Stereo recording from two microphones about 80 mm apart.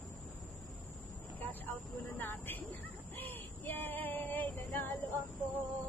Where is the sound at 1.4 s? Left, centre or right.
Left.